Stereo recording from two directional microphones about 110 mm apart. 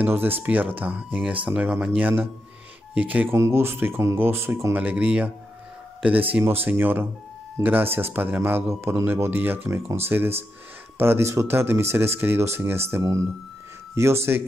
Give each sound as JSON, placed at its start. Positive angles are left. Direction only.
{"t": 0.0, "sound": "a man's voice", "side_deg": -20}
{"t": 4.7, "sound": "speech", "side_deg": -15}
{"t": 6.4, "sound": "a man's voice", "side_deg": -20}